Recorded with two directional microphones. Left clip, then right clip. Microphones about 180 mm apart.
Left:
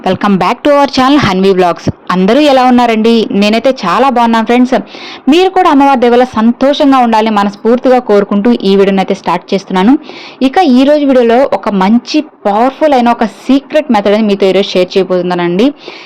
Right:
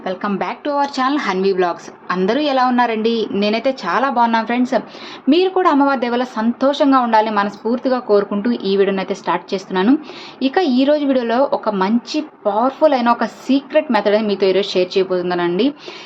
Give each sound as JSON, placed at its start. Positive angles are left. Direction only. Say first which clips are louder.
{"t": 0.0, "sound": "a woman's voice", "louder": "left 11 dB", "side_deg": 60}